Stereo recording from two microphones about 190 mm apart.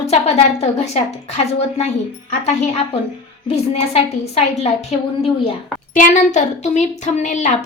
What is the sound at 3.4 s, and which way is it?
Speech, 30° left (ahead or behind).